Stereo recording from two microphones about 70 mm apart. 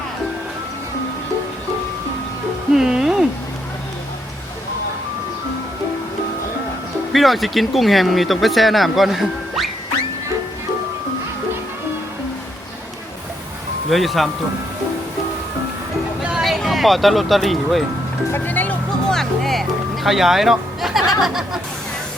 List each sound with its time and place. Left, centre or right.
2.7 s music: centre
7.1 s speech: centre
13.9 s speech: centre
16.4 s speech: centre
18.3 s music: left
19.1 s music: centre